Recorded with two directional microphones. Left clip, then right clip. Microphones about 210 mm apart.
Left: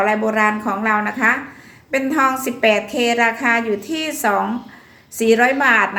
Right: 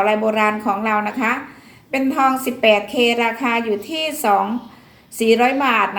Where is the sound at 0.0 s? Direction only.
15° left (ahead or behind).